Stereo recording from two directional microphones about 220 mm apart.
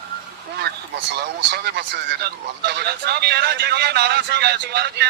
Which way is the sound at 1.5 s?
45° right (ahead or behind).